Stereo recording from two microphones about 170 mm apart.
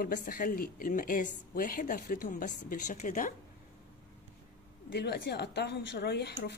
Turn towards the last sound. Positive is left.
turn(degrees=80)